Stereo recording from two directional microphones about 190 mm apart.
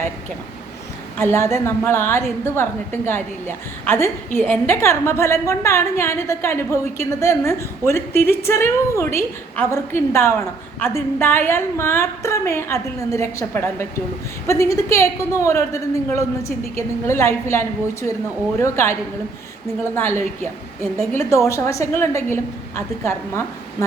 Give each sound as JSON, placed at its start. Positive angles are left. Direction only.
{"t": 1.2, "sound": "a woman's voice", "side_deg": 15}